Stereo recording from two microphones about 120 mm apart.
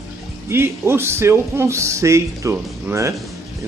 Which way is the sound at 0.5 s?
20° right (ahead or behind).